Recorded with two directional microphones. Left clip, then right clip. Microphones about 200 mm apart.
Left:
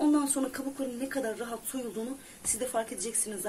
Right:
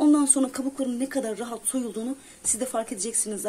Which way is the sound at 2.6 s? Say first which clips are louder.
Right 3 dB; 40° right (ahead or behind).